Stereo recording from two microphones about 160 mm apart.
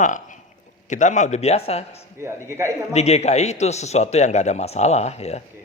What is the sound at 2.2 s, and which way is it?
Speech, 15° right (ahead or behind).